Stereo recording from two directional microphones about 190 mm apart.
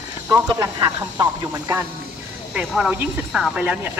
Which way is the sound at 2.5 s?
5° right (ahead or behind).